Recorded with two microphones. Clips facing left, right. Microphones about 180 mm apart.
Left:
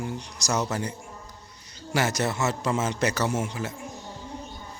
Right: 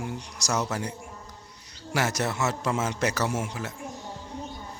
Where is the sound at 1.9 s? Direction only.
Centre (ahead or behind).